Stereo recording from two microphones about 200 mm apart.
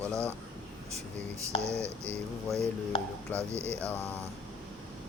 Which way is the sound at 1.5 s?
30° left (ahead or behind).